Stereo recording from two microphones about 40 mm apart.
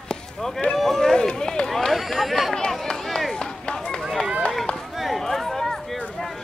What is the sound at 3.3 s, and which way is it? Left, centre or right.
Run, centre.